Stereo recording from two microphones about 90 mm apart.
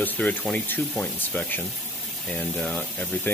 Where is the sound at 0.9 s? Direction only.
5° left (ahead or behind).